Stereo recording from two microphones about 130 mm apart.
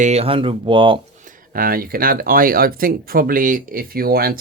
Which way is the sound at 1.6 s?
90° right.